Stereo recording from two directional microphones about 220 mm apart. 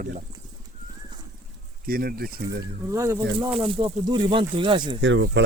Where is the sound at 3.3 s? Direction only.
25° right (ahead or behind).